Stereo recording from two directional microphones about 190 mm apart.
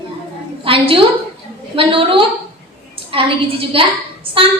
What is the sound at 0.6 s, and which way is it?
A woman's voice, 25° right (ahead or behind).